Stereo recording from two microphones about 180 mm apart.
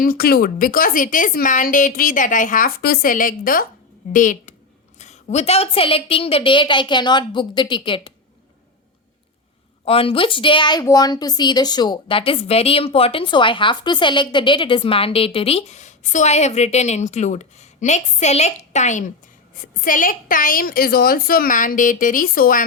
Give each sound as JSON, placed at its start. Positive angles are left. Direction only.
{"t": 0.0, "sound": "a woman's voice", "side_deg": 55}
{"t": 9.8, "sound": "a woman's voice", "side_deg": 30}